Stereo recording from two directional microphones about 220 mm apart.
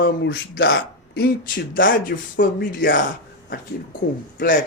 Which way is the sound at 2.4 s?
55° left (ahead or behind).